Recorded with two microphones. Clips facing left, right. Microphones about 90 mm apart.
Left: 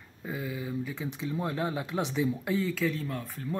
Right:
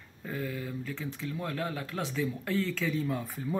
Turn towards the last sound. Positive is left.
turn(degrees=-5)  # may be behind; listen again after turning